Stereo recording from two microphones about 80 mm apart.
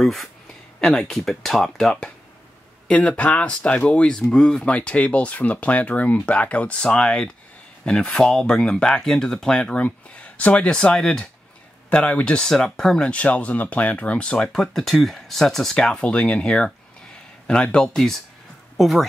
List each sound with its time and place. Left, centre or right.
0.0 s speech: centre